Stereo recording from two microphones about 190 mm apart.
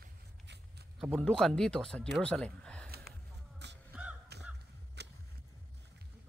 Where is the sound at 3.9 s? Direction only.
5° right (ahead or behind).